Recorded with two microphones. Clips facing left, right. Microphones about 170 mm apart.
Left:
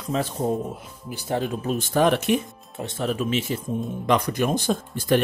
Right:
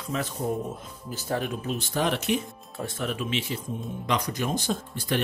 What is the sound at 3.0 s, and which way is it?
Speech, 40° left (ahead or behind).